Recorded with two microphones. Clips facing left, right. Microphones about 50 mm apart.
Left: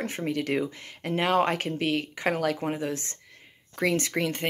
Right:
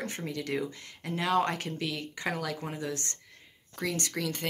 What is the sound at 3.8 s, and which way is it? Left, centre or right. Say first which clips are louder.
Speech: left 7 dB; left.